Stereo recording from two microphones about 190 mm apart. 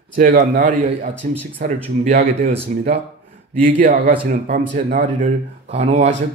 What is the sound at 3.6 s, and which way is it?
Speech, 45° right (ahead or behind).